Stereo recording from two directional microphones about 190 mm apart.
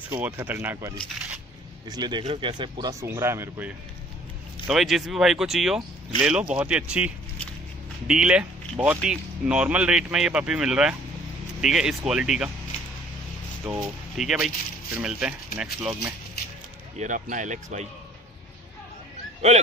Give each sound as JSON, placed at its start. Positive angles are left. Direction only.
{"t": 0.1, "sound": "speech", "side_deg": -10}
{"t": 8.1, "sound": "speech", "side_deg": -5}
{"t": 14.1, "sound": "speech", "side_deg": -5}
{"t": 17.0, "sound": "speech", "side_deg": -40}